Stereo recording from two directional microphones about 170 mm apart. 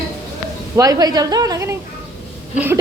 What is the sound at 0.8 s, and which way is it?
A woman's voice, 20° right (ahead or behind).